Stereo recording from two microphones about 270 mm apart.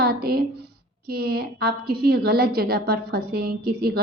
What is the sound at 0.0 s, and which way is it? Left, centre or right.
A woman's voice, right.